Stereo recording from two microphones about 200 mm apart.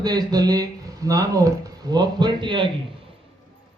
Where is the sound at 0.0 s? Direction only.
20° right (ahead or behind).